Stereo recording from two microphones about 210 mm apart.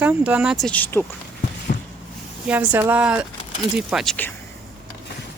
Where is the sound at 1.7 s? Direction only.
40° left (ahead or behind).